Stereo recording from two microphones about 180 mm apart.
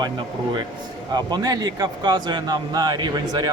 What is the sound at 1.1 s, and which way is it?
Speech, 20° right (ahead or behind).